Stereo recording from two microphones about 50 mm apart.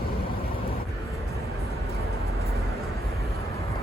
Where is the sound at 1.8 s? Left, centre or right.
Left.